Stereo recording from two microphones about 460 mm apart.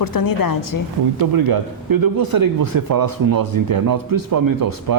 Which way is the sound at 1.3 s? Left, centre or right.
Right.